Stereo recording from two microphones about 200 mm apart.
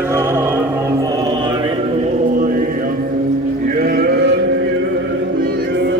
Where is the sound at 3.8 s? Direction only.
50° right (ahead or behind).